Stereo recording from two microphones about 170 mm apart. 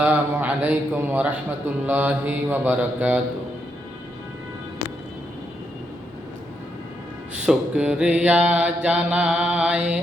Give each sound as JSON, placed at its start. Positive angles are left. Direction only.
{"t": 0.0, "sound": "mantra", "side_deg": -10}
{"t": 7.3, "sound": "mantra", "side_deg": -5}